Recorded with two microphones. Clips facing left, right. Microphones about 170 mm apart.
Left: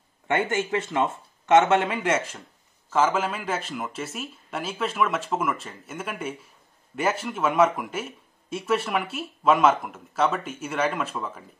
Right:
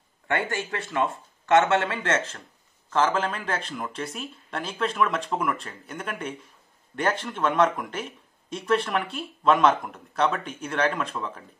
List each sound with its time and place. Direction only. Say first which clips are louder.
0.3 s speech: left 4 dB; 20° left (ahead or behind); by 11.4 s 5° left (ahead or behind)